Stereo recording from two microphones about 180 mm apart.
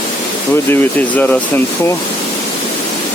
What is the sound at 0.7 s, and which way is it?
Speech, 10° left (ahead or behind).